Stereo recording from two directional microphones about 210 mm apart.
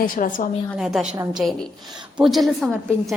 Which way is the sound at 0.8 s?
Centre (ahead or behind).